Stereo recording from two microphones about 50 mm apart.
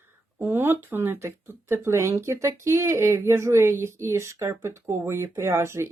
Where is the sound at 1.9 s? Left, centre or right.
Right.